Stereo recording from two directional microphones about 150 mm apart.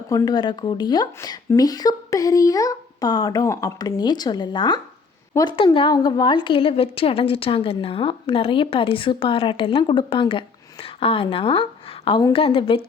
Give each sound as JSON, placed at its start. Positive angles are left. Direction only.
{"t": 0.1, "sound": "a woman's voice", "side_deg": 25}